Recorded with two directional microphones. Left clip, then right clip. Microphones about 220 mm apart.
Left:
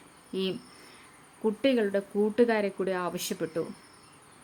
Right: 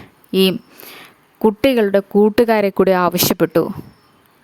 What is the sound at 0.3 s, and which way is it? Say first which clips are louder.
Speech: right 17 dB; 50° right (ahead or behind).